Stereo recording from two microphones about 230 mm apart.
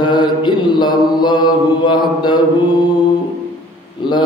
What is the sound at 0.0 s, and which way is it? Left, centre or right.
Mantra, centre.